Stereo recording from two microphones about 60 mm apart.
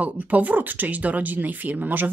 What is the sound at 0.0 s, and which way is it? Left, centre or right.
Speech, right.